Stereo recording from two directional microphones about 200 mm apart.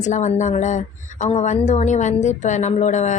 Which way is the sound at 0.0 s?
35° left (ahead or behind).